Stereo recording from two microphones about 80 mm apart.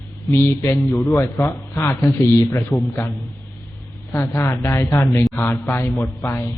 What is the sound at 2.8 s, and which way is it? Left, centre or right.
Speech, left.